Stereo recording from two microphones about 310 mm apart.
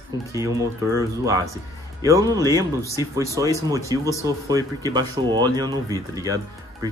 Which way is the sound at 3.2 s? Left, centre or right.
Centre.